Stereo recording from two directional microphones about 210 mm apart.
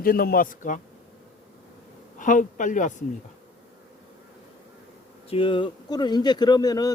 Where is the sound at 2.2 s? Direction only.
40° left (ahead or behind).